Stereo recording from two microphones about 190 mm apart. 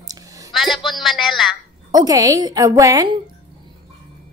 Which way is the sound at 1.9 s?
20° right (ahead or behind).